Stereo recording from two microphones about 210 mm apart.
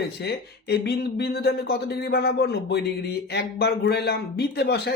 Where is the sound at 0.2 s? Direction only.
50° left (ahead or behind).